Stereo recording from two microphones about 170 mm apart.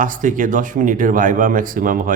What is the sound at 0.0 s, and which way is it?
Speech, 50° right (ahead or behind).